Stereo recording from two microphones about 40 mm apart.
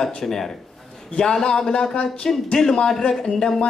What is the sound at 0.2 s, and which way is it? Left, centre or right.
A man's voice, centre.